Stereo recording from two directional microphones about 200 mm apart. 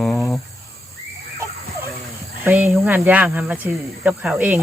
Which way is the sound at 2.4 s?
10° right (ahead or behind).